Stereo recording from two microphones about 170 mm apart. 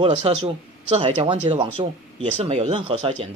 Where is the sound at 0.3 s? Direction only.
35° right (ahead or behind).